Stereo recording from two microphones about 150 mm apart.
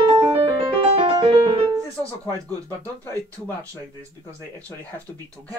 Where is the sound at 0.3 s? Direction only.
40° right (ahead or behind); by 2.4 s 25° right (ahead or behind).